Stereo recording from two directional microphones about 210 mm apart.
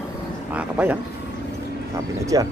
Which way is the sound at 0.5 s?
5° right (ahead or behind).